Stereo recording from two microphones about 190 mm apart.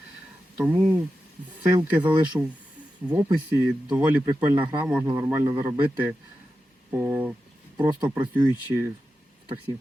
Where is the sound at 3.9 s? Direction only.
10° right (ahead or behind).